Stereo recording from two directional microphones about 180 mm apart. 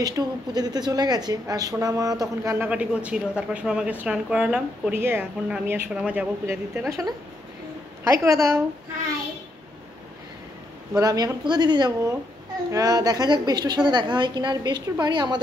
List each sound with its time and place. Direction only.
0.0 s a woman's voice: 20° right (ahead or behind)
11.0 s a woman's voice: 20° right (ahead or behind)